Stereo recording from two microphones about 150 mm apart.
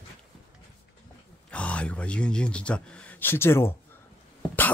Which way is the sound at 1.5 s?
10° left (ahead or behind).